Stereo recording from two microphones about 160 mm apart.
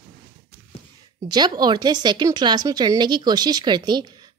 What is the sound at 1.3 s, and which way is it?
Speech, 25° right (ahead or behind).